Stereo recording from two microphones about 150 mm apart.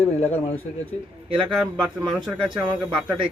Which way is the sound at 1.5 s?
5° right (ahead or behind).